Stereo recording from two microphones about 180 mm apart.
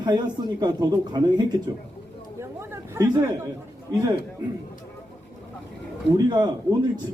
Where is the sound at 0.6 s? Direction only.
25° right (ahead or behind).